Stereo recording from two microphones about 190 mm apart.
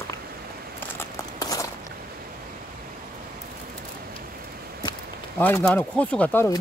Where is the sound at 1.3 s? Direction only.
20° left (ahead or behind).